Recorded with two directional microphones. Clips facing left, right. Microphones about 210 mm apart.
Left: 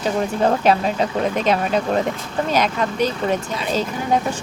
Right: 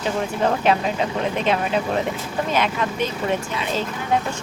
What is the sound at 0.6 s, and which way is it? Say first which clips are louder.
Speech: left 2 dB; 40° left (ahead or behind).